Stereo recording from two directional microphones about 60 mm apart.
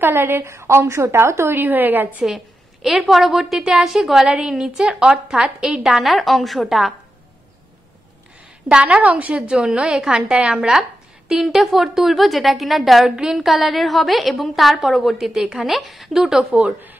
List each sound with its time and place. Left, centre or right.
0.0 s a woman's voice: right
1.6 s a woman's voice: right
2.2 s a woman's voice: centre
8.6 s a woman's voice: centre
9.5 s a woman's voice: centre
16.5 s a woman's voice: right